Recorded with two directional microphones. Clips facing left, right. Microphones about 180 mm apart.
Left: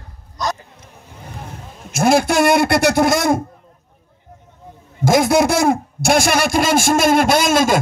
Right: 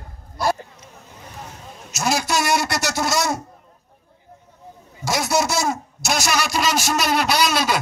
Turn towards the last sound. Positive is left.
turn(degrees=50)  # may be behind; listen again after turning